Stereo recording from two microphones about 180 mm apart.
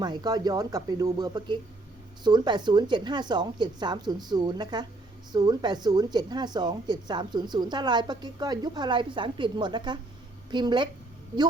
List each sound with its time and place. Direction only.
0.0 s a woman's voice: 25° right (ahead or behind)